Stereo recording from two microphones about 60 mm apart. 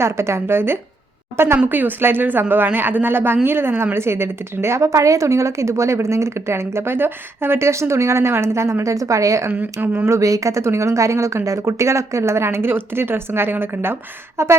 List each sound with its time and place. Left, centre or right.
0.0 s a woman's voice: right
14.4 s a woman's voice: right